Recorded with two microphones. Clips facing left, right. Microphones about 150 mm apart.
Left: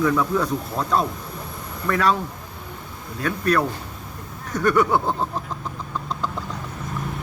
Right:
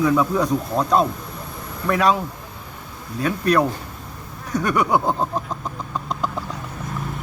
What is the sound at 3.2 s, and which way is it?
Speech, 15° right (ahead or behind).